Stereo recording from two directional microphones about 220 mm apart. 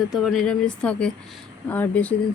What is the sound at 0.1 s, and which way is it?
Speech, centre (ahead or behind).